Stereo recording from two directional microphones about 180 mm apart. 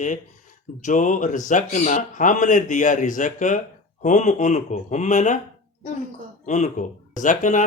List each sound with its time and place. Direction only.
0.8 s speech: 45° left (ahead or behind)
6.4 s speech: 40° left (ahead or behind)